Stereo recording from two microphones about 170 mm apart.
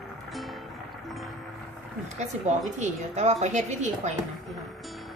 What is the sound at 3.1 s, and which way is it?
Speech, 40° right (ahead or behind).